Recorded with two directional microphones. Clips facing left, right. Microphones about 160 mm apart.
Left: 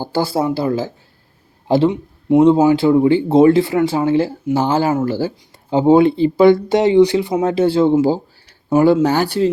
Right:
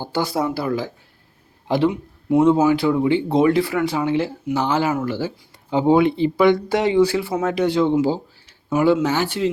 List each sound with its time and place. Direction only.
0.0 s a man's voice: 35° left (ahead or behind)
3.2 s speech: 25° left (ahead or behind)
4.0 s speech: 35° left (ahead or behind); by 7.4 s 20° left (ahead or behind)
7.4 s speech: 30° left (ahead or behind)